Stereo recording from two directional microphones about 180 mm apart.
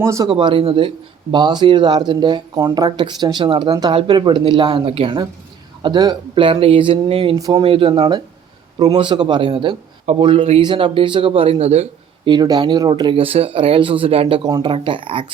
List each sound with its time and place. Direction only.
0.0 s speech: 15° right (ahead or behind)
0.3 s speech: 30° right (ahead or behind)
7.3 s speech: 20° right (ahead or behind)
7.6 s speech: 30° right (ahead or behind)
12.3 s speech: 25° right (ahead or behind)